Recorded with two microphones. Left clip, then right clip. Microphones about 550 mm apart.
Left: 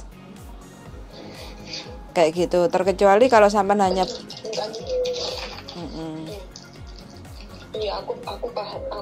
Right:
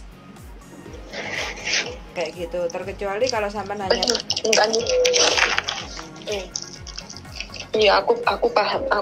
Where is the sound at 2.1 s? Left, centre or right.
Left.